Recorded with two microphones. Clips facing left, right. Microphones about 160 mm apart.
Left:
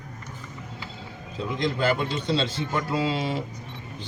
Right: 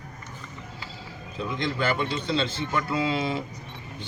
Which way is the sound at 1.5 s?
35° left (ahead or behind).